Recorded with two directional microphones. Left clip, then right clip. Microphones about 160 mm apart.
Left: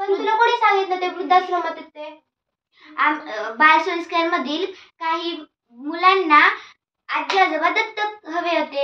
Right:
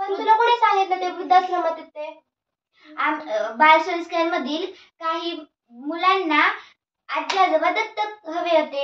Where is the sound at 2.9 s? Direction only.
20° right (ahead or behind).